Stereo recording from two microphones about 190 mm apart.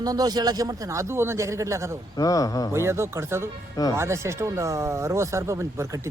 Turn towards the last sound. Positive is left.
turn(degrees=-15)  # may be behind; listen again after turning